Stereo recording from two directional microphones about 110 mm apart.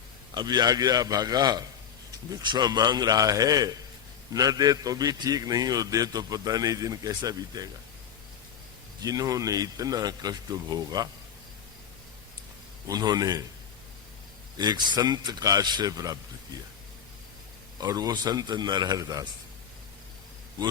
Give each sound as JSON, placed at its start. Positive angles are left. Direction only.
{"t": 0.3, "sound": "a man's voice", "side_deg": -40}
{"t": 9.0, "sound": "a man's voice", "side_deg": -35}
{"t": 12.9, "sound": "a man's voice", "side_deg": -35}
{"t": 14.6, "sound": "a man's voice", "side_deg": -40}
{"t": 17.7, "sound": "a man's voice", "side_deg": -35}